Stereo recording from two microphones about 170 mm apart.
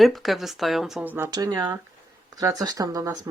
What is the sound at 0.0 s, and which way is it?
Speech, centre (ahead or behind).